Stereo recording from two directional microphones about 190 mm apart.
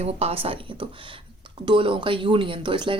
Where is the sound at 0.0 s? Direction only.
30° right (ahead or behind).